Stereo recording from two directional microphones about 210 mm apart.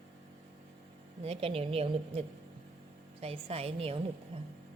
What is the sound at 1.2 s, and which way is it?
A woman's voice, 30° right (ahead or behind).